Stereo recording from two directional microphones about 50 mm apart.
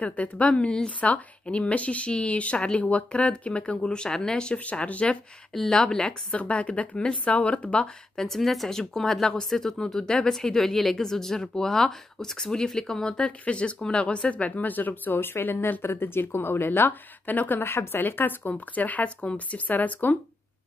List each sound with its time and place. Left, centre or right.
0.0 s speech: left
5.5 s speech: centre
6.3 s speech: left
7.8 s speech: centre; by 20.2 s left